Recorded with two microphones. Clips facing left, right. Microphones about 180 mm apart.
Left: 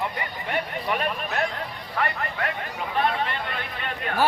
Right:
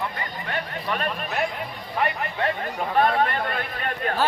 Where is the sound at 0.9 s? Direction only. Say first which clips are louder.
Right 2 dB; 5° left (ahead or behind).